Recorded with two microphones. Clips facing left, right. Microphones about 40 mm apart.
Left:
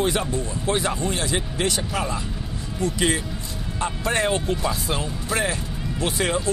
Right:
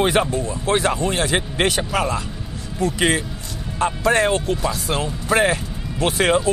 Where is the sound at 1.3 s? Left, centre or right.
Right.